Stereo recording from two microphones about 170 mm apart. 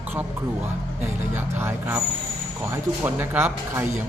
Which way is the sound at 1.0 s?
10° right (ahead or behind).